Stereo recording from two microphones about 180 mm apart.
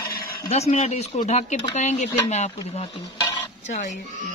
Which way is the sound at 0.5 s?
35° left (ahead or behind).